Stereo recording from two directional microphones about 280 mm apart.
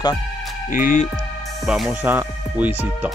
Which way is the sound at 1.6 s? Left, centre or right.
Centre.